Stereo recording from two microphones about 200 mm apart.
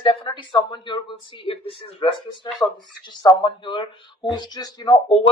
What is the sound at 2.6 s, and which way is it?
Speech, 15° left (ahead or behind).